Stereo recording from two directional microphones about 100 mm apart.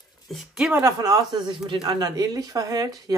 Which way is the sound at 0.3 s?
5° right (ahead or behind).